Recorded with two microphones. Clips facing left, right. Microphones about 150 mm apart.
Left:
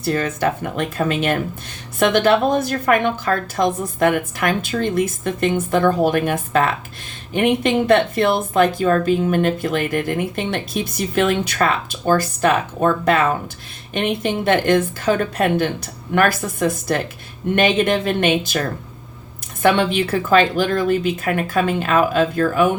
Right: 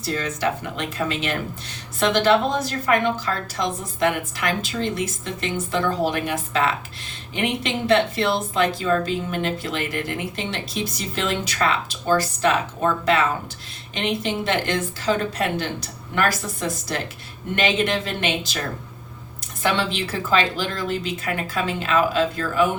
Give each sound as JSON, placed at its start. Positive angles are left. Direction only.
{"t": 0.0, "sound": "a woman's voice", "side_deg": 55}
{"t": 19.6, "sound": "a woman's voice", "side_deg": 55}